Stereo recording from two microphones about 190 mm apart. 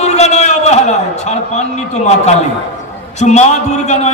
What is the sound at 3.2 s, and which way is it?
Speech, 35° left (ahead or behind).